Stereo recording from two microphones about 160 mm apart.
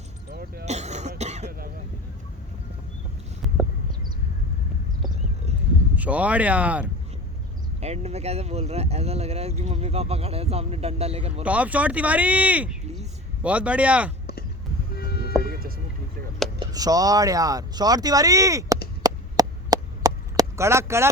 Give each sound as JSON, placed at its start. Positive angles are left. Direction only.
{"t": 0.3, "sound": "throat clearing", "side_deg": -70}
{"t": 0.6, "sound": "throat clearing", "side_deg": -45}
{"t": 1.5, "sound": "throat clearing", "side_deg": -65}
{"t": 6.0, "sound": "speech", "side_deg": -10}
{"t": 7.8, "sound": "speech", "side_deg": -40}
{"t": 11.4, "sound": "speech", "side_deg": -10}
{"t": 14.9, "sound": "vehicle", "side_deg": 80}
{"t": 16.6, "sound": "speech", "side_deg": -25}
{"t": 19.0, "sound": "chop", "side_deg": -25}